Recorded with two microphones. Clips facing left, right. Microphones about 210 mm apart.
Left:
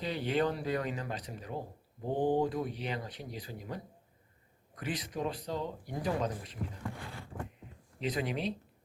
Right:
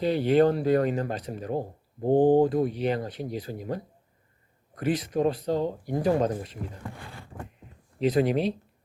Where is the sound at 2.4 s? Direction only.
55° right (ahead or behind).